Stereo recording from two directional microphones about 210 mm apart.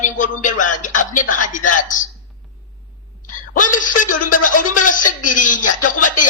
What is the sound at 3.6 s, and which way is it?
A man's voice, 40° left (ahead or behind).